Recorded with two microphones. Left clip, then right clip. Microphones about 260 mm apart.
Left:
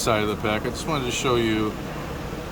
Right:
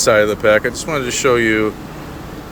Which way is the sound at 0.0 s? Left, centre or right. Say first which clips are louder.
Right 11 dB; centre.